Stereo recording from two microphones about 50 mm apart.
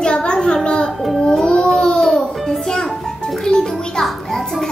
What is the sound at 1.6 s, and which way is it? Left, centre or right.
Music, centre.